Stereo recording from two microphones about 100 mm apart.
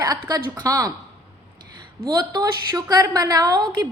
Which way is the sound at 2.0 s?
40° right (ahead or behind).